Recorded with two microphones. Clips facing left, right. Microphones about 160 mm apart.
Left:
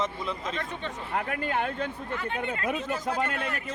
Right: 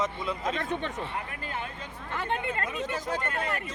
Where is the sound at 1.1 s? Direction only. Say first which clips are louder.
Left 7 dB; 80° left.